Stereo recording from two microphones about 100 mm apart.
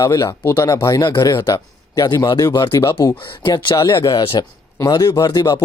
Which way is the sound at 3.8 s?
35° left (ahead or behind).